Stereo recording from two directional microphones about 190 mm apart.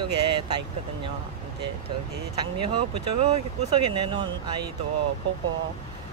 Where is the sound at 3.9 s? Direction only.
25° right (ahead or behind).